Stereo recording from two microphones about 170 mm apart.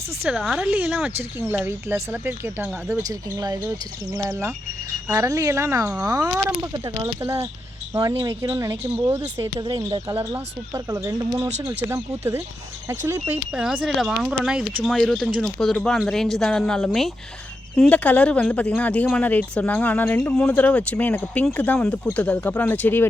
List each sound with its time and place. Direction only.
0.2 s speech: 5° right (ahead or behind)
11.4 s speech: 40° right (ahead or behind)
11.9 s speech: 15° right (ahead or behind)
13.5 s speech: 5° right (ahead or behind); by 23.0 s 10° left (ahead or behind)